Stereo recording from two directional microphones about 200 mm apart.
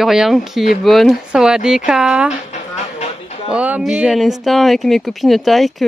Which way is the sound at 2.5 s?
35° left (ahead or behind).